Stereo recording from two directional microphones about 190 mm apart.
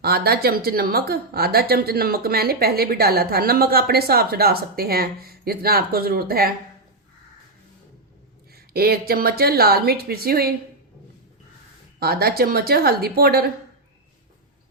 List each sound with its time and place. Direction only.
0.0 s a woman's voice: 55° right (ahead or behind)
8.5 s a woman's voice: 55° right (ahead or behind)
11.9 s speech: 55° right (ahead or behind)